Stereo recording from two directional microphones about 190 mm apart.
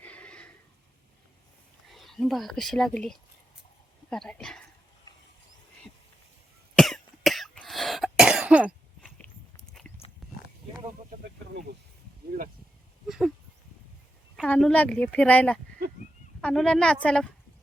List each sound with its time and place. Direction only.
0.0 s a sound: 5° left (ahead or behind)
1.9 s a woman's voice: centre (ahead or behind)
6.7 s cough: centre (ahead or behind)
9.8 s dog: 5° left (ahead or behind)
11.2 s snake: 60° right (ahead or behind)
13.1 s speech: centre (ahead or behind)
14.3 s a woman's voice: 5° left (ahead or behind)